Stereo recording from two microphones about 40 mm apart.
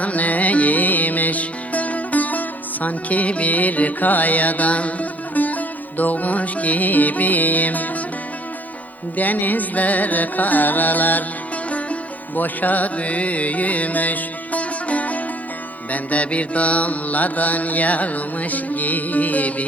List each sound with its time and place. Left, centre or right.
0.0 s music: left
9.1 s music: left
12.4 s music: left
15.9 s mantra: left